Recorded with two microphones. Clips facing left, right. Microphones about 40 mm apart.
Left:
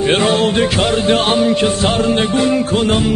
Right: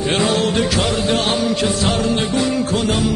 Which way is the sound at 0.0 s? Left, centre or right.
Left.